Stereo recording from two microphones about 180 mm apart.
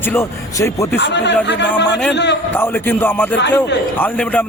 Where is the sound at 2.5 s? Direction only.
10° left (ahead or behind).